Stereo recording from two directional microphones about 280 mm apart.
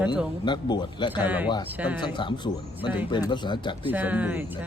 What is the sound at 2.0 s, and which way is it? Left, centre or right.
Speech, centre.